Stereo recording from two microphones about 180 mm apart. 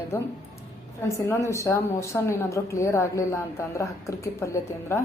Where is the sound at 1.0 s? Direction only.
15° left (ahead or behind).